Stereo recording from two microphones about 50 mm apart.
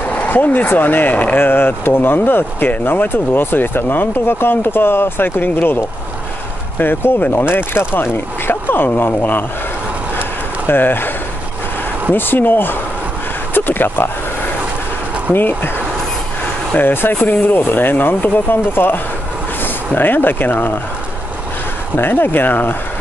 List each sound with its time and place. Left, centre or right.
0.0 s speech: left
1.4 s speech: left
6.8 s speech: left
10.7 s speech: left
12.1 s speech: left
15.3 s speech: left
16.7 s speech: left
21.9 s speech: left